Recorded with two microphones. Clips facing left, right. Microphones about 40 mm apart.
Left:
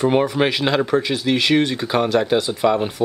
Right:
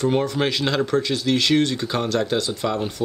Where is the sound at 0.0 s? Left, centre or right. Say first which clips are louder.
Left 4 dB; centre.